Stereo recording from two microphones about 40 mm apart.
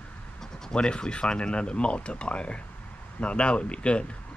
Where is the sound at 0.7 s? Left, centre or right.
Left.